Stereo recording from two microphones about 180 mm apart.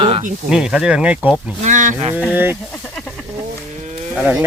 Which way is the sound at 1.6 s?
45° right (ahead or behind).